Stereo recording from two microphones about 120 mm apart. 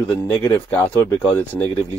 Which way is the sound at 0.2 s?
20° left (ahead or behind).